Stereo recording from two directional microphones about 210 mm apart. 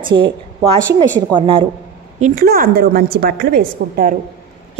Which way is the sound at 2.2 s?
45° right (ahead or behind).